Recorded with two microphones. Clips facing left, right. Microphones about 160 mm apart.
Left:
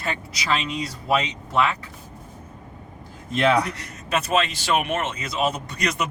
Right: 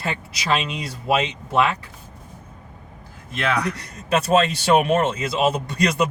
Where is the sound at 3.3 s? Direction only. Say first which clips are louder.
Left 4 dB; 25° left (ahead or behind).